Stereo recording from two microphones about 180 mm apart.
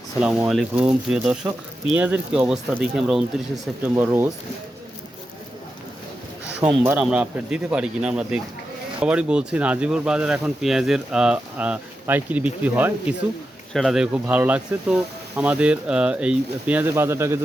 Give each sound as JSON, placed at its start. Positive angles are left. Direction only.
{"t": 0.2, "sound": "speech", "side_deg": -5}
{"t": 3.9, "sound": "speech", "side_deg": -15}
{"t": 6.6, "sound": "speech", "side_deg": -10}